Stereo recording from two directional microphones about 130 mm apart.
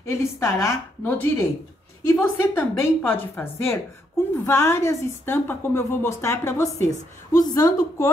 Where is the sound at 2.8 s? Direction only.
15° left (ahead or behind).